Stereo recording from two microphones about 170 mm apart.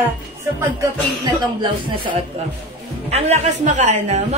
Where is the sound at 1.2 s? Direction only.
25° right (ahead or behind).